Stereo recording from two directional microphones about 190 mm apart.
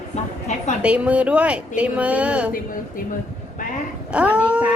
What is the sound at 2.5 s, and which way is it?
Speech, 45° left (ahead or behind).